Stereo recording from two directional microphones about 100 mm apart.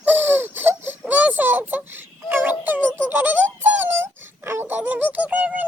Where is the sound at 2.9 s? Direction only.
20° right (ahead or behind).